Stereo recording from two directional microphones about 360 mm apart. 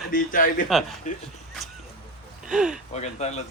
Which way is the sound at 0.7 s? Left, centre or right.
Centre.